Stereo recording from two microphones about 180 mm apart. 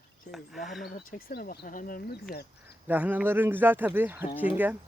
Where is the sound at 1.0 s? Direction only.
55° left (ahead or behind).